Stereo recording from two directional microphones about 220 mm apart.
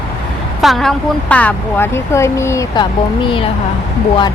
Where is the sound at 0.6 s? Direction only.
Centre (ahead or behind).